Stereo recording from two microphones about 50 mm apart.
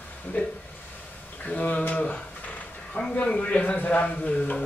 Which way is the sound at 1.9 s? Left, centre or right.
Left.